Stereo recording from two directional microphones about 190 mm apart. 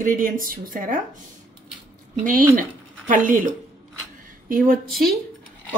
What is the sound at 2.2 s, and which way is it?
Speech, 45° right (ahead or behind).